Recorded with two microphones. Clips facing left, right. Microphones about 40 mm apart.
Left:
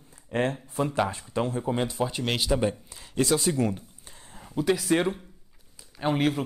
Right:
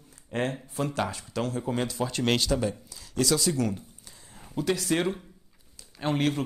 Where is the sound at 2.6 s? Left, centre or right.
Left.